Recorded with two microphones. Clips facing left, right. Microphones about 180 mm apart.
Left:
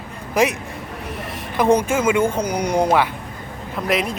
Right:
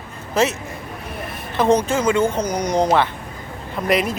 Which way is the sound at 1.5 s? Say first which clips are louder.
Even; 10° left (ahead or behind).